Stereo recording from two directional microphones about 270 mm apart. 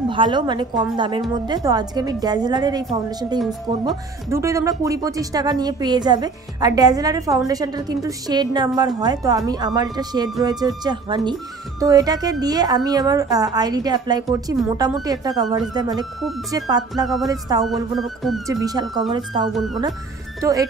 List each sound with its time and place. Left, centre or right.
0.1 s speech: centre
17.9 s music: centre
18.5 s speech: centre
19.5 s music: centre
20.3 s speech: centre